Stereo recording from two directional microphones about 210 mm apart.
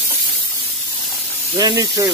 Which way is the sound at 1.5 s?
15° right (ahead or behind).